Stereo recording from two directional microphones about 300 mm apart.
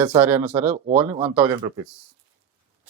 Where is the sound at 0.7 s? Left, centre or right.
Centre.